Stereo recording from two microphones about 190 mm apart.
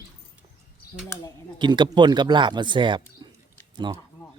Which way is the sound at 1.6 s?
25° right (ahead or behind).